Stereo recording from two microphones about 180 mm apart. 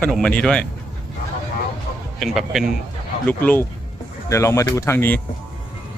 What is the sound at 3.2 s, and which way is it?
Speech, 10° left (ahead or behind).